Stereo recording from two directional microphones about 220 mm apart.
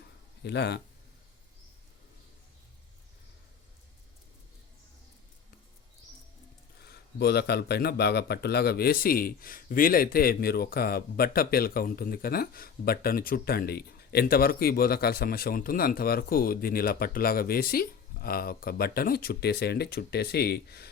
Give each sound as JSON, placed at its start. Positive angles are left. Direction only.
{"t": 0.4, "sound": "speech", "side_deg": 50}
{"t": 6.8, "sound": "speech", "side_deg": 45}